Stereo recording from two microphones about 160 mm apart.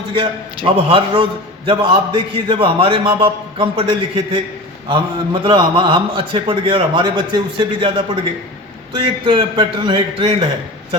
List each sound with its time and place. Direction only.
0.2 s a man's voice: 35° right (ahead or behind)